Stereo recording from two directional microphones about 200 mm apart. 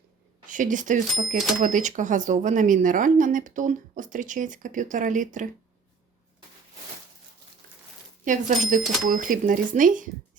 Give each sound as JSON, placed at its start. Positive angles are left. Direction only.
{"t": 0.4, "sound": "speech", "side_deg": -40}
{"t": 8.2, "sound": "speech", "side_deg": -40}